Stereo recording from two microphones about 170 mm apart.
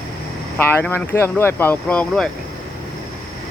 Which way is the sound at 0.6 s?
10° left (ahead or behind).